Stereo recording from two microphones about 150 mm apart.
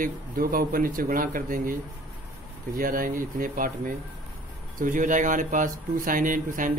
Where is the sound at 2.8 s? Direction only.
70° right (ahead or behind).